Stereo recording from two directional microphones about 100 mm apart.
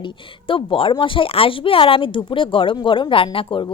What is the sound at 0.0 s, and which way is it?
A woman's voice, 60° left (ahead or behind).